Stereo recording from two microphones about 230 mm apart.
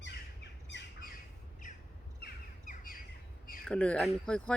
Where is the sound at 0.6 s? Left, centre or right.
Left.